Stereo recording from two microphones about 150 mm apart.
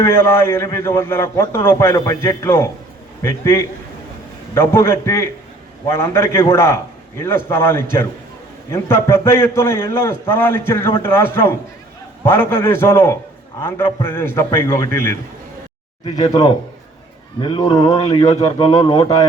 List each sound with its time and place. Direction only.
0.0 s a man's voice: 15° left (ahead or behind)
16.0 s a man's voice: 25° left (ahead or behind)